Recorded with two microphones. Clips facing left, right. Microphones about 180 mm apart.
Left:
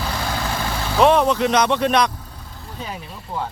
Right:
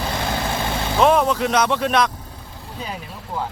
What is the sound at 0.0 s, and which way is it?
Vehicle, 20° right (ahead or behind).